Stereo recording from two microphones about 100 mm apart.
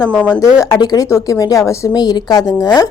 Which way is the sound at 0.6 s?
40° left (ahead or behind).